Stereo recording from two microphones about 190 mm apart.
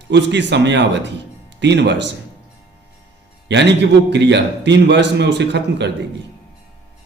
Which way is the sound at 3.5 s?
65° right (ahead or behind).